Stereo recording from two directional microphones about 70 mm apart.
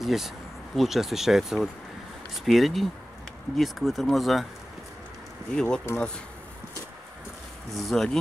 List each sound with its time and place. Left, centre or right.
0.0 s speech: centre
5.5 s speech: centre
5.9 s speech: left
7.7 s speech: centre